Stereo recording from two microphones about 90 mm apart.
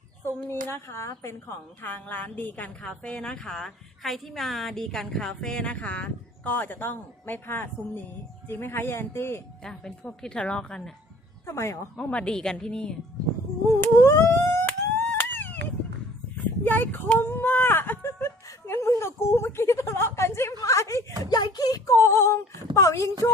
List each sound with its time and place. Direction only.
0.3 s a woman's voice: 25° left (ahead or behind)
9.6 s a woman's voice: 5° left (ahead or behind)
11.4 s a woman's voice: 35° left (ahead or behind)
11.9 s a woman's voice: 10° left (ahead or behind)
13.8 s a sound: 25° left (ahead or behind)
17.2 s whimper: 25° left (ahead or behind)
20.6 s speech: 35° left (ahead or behind)
21.2 s speech: 50° left (ahead or behind)